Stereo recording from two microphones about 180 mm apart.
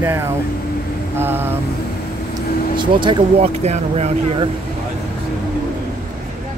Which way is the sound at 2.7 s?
25° right (ahead or behind).